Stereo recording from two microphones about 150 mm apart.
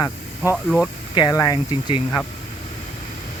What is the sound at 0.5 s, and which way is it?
Speech, centre (ahead or behind).